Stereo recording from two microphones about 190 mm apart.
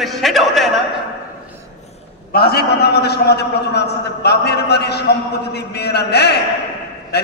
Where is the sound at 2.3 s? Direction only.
55° left (ahead or behind).